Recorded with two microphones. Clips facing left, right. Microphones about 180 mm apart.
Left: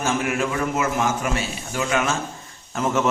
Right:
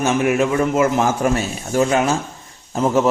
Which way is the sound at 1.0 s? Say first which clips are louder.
Right 5 dB; 40° right (ahead or behind).